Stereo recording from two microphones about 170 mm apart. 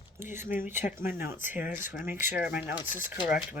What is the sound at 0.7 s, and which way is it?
Speech, 45° left (ahead or behind).